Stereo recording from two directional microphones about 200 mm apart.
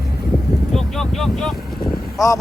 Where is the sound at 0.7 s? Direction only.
Centre (ahead or behind).